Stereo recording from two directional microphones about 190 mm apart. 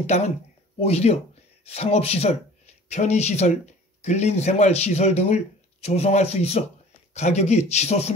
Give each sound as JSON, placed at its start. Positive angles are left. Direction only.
{"t": 0.0, "sound": "speech", "side_deg": 35}